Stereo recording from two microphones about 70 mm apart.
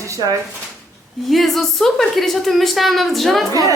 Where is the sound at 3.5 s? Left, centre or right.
Right.